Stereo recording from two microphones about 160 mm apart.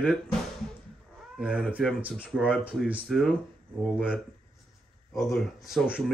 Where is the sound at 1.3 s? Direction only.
5° right (ahead or behind).